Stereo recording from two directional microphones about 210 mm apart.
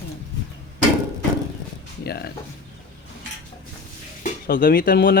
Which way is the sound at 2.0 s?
50° left (ahead or behind).